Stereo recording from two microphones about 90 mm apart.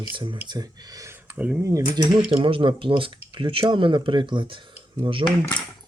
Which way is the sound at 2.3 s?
75° right (ahead or behind).